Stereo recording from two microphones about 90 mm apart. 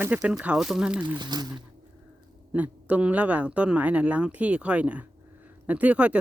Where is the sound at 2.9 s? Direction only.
15° right (ahead or behind).